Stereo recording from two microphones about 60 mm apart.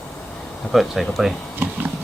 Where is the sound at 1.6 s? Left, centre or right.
Right.